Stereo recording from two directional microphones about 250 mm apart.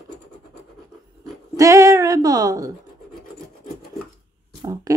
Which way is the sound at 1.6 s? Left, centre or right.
Centre.